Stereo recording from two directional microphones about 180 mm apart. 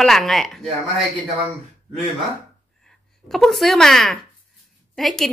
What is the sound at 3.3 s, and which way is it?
Speech, centre (ahead or behind).